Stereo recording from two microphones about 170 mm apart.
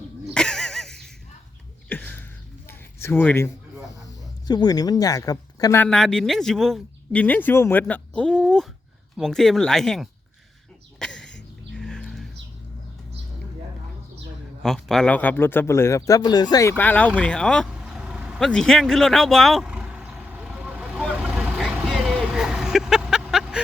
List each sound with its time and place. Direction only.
0.3 s a sound: 5° left (ahead or behind)
4.0 s speech: 25° left (ahead or behind)
5.8 s speech: 5° left (ahead or behind)
11.0 s a sound: 5° left (ahead or behind)
14.6 s speech: centre (ahead or behind)
17.7 s vehicle: 5° right (ahead or behind)